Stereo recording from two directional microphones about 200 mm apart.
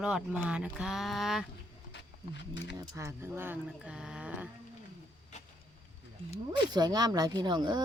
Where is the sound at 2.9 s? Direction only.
15° right (ahead or behind).